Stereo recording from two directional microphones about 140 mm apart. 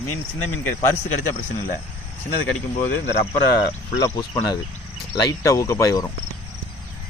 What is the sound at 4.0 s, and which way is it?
Speech, 30° left (ahead or behind).